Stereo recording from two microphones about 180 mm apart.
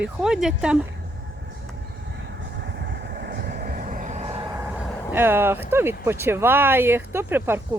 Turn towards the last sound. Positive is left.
turn(degrees=-10)  # may be behind; listen again after turning